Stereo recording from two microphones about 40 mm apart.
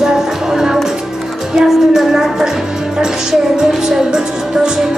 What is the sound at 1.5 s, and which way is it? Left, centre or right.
Speech, centre.